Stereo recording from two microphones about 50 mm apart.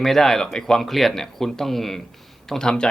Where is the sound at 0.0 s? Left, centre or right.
Centre.